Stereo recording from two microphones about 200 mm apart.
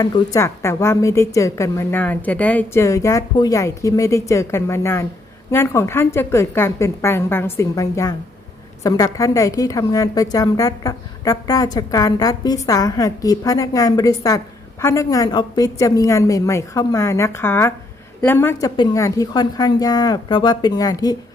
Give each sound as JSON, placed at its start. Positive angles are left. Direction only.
{"t": 0.0, "sound": "a woman's voice", "side_deg": 15}